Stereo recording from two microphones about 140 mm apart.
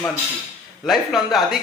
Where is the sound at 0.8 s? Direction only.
Centre (ahead or behind).